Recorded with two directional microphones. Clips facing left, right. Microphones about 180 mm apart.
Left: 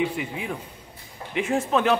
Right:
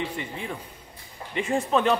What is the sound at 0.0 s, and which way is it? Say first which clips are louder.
A man's voice: left 5 dB; 5° left (ahead or behind).